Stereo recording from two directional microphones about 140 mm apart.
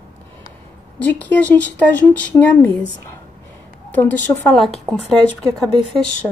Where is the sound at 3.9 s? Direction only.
15° left (ahead or behind).